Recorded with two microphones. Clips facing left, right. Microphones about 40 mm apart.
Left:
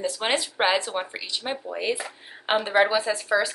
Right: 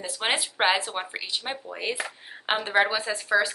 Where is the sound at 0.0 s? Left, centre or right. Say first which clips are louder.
Left 2 dB; centre.